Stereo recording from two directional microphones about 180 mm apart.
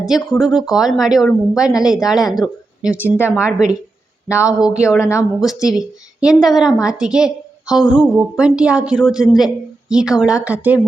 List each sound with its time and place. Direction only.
0.0 s a woman's voice: centre (ahead or behind)
4.9 s speech: 15° left (ahead or behind)
5.7 s a woman's voice: 5° right (ahead or behind)